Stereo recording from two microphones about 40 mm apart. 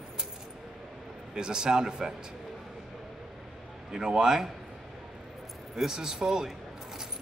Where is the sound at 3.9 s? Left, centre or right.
Centre.